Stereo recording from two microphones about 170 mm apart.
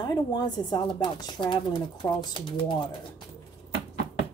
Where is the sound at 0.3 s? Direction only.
25° left (ahead or behind).